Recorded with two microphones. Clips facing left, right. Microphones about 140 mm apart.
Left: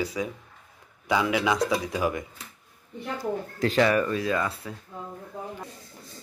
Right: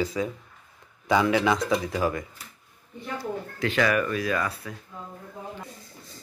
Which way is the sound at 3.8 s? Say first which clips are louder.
Left 2 dB; 25° left (ahead or behind).